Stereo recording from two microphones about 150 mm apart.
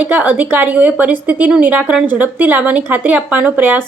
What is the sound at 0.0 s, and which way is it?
A woman's voice, 10° right (ahead or behind).